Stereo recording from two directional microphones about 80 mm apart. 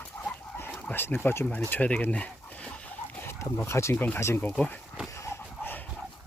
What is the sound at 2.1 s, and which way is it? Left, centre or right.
Chicken, centre.